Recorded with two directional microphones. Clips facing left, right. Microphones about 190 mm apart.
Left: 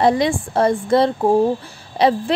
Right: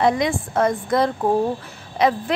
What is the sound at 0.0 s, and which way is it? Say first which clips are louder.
A woman's voice: left 3 dB; 35° left (ahead or behind).